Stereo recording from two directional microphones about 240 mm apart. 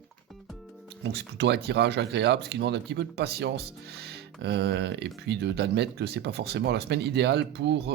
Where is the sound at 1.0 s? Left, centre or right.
Right.